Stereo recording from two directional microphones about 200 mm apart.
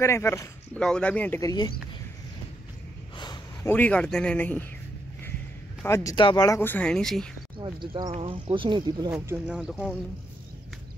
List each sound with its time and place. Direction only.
0.0 s speech: 15° left (ahead or behind)
3.6 s speech: 10° left (ahead or behind)
5.9 s speech: 15° left (ahead or behind)
7.5 s speech: 25° right (ahead or behind)
9.1 s speech: 10° right (ahead or behind)